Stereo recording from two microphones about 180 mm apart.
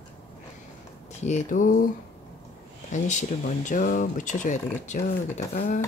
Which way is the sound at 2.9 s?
40° left (ahead or behind).